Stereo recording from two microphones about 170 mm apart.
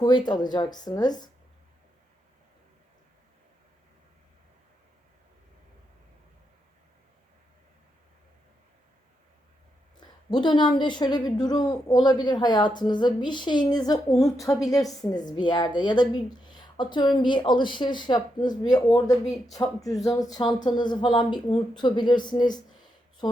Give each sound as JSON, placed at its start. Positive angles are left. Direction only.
{"t": 0.0, "sound": "a woman's voice", "side_deg": 25}
{"t": 10.0, "sound": "a sound", "side_deg": 25}
{"t": 10.8, "sound": "a woman's voice", "side_deg": 25}